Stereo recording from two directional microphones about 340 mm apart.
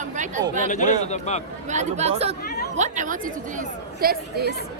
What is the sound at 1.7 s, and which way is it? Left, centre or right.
A woman's voice, centre.